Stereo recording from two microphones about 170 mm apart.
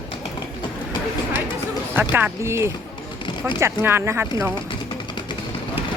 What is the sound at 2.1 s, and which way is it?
Speech, 15° right (ahead or behind).